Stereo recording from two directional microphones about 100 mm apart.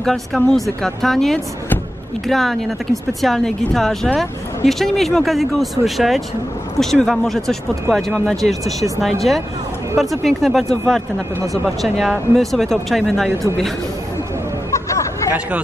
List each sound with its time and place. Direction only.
0.0 s speech: 5° left (ahead or behind)
11.3 s speech: 35° right (ahead or behind)
11.6 s speech: centre (ahead or behind)
13.3 s a man's voice: 25° right (ahead or behind)
14.7 s hubbub: 30° left (ahead or behind)